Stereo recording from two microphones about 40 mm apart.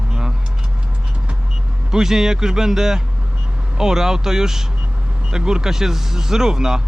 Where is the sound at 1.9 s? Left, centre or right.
Centre.